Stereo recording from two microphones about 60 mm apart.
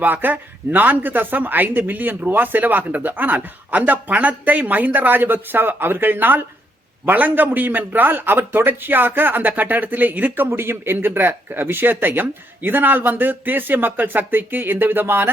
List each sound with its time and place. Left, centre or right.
0.0 s a man's voice: right